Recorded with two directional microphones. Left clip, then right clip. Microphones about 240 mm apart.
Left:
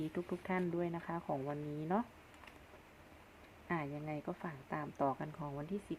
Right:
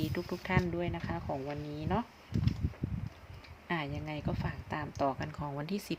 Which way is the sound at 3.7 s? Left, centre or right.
Centre.